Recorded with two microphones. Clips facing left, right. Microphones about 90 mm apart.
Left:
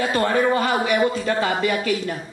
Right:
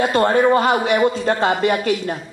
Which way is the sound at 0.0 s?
40° right (ahead or behind).